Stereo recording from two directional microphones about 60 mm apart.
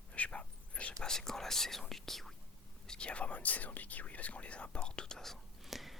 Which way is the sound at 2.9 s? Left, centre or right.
Centre.